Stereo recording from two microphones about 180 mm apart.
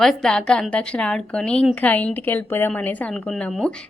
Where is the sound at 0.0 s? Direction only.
Centre (ahead or behind).